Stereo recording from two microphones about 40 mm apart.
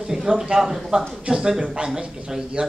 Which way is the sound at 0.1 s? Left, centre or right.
Centre.